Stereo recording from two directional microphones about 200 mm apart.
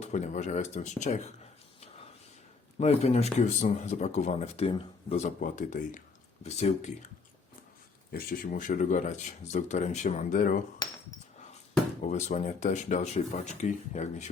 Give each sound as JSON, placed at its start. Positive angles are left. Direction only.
{"t": 0.0, "sound": "speech", "side_deg": 35}
{"t": 2.7, "sound": "speech", "side_deg": 30}
{"t": 8.1, "sound": "speech", "side_deg": 45}
{"t": 10.8, "sound": "speech", "side_deg": 20}
{"t": 12.0, "sound": "speech", "side_deg": 35}